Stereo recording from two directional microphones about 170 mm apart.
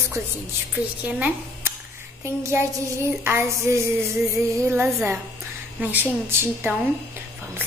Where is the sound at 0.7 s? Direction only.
10° right (ahead or behind).